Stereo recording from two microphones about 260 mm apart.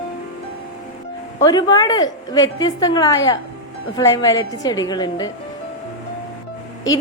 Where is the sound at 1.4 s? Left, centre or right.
Centre.